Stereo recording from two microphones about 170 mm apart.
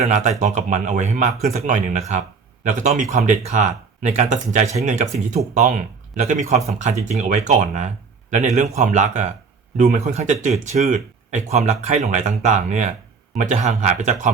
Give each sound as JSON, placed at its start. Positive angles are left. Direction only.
{"t": 0.0, "sound": "speech", "side_deg": -45}